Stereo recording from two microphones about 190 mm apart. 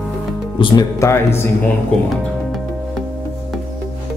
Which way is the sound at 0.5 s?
20° left (ahead or behind).